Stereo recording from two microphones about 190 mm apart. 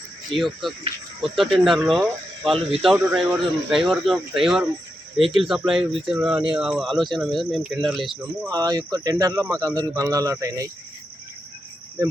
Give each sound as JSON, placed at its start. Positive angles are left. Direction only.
{"t": 0.3, "sound": "speech", "side_deg": 0}
{"t": 5.2, "sound": "speech", "side_deg": -30}
{"t": 5.5, "sound": "speech", "side_deg": 0}
{"t": 8.4, "sound": "speech", "side_deg": -20}
{"t": 12.0, "sound": "cricket", "side_deg": -15}